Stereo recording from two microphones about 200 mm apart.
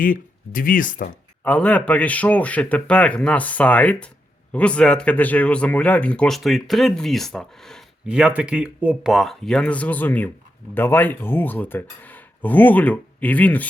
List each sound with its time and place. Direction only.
0.0 s speech: 45° left (ahead or behind)
1.5 s speech: 10° left (ahead or behind)